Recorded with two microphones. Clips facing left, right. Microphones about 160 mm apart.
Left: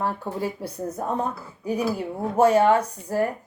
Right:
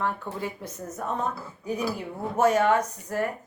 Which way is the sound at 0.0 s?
35° left (ahead or behind).